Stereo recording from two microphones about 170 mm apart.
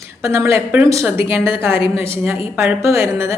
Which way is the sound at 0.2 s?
15° right (ahead or behind).